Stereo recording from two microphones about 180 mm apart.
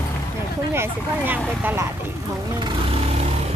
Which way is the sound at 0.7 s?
10° right (ahead or behind).